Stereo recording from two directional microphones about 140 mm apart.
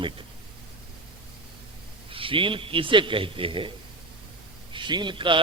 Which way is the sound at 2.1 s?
40° right (ahead or behind).